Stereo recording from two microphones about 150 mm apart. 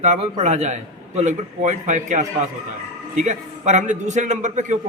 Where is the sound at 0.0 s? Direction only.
50° right (ahead or behind).